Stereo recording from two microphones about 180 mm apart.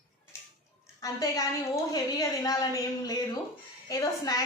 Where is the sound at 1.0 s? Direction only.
20° left (ahead or behind).